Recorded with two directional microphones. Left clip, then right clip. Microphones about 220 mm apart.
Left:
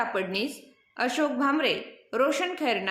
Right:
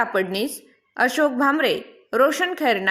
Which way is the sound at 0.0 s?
35° right (ahead or behind).